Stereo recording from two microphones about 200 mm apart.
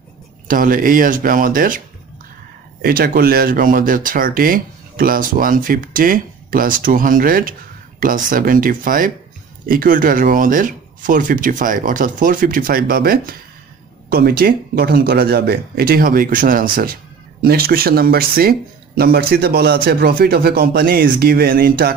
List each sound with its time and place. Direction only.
0.5 s speech: 45° right (ahead or behind)
2.8 s speech: 50° right (ahead or behind)